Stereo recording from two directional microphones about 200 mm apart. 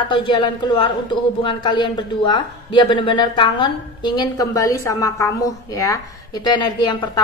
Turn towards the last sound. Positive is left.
turn(degrees=20)  # may be behind; listen again after turning